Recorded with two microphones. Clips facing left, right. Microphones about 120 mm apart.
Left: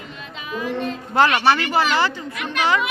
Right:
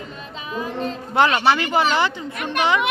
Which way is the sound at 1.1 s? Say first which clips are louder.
Even; 20° right (ahead or behind).